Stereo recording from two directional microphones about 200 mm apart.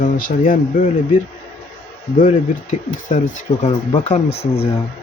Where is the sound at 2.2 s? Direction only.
40° left (ahead or behind).